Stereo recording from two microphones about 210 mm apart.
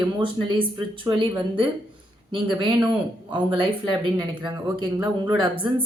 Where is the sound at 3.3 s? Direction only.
25° right (ahead or behind).